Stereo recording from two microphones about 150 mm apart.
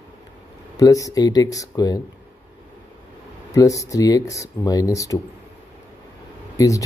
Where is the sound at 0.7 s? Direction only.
25° left (ahead or behind).